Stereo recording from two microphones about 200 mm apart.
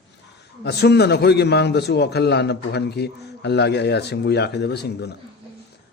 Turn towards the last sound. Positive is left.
turn(degrees=55)  # may be behind; listen again after turning